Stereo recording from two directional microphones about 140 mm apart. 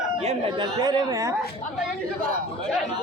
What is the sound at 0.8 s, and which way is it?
Speech, 30° right (ahead or behind).